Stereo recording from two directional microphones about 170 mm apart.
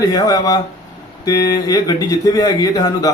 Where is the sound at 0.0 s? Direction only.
20° left (ahead or behind).